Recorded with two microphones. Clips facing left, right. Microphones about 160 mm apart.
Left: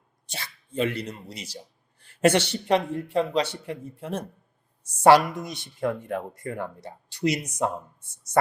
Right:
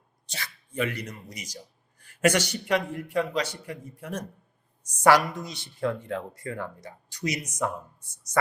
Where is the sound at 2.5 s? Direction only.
30° left (ahead or behind).